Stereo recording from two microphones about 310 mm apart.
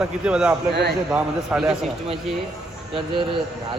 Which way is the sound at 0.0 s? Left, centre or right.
Centre.